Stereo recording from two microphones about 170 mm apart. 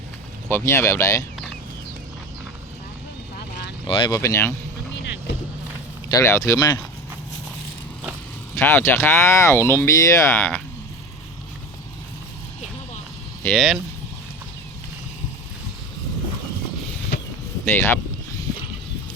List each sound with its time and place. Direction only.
0.4 s speech: 15° left (ahead or behind)
3.8 s speech: 30° left (ahead or behind)
6.1 s speech: 20° left (ahead or behind)
8.5 s speech: 15° left (ahead or behind)
13.4 s speech: centre (ahead or behind)
17.7 s speech: 10° left (ahead or behind)